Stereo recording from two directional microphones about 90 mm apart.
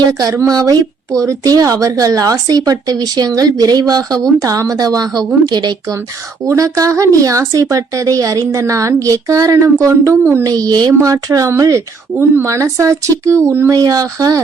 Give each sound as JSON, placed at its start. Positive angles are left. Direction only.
{"t": 0.1, "sound": "a woman's voice", "side_deg": -35}
{"t": 6.4, "sound": "speech", "side_deg": -35}
{"t": 13.7, "sound": "speech", "side_deg": -40}